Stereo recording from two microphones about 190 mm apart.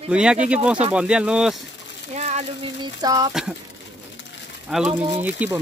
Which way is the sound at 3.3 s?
5° right (ahead or behind).